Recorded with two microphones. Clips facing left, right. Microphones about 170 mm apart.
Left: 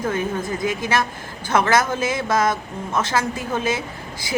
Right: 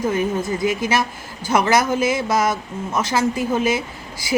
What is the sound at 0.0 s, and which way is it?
Speech, 10° right (ahead or behind).